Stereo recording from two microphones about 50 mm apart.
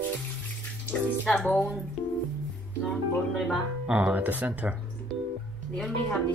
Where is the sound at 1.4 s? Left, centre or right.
Left.